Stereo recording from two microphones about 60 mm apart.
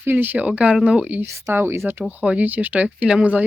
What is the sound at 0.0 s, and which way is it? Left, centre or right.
Speech, right.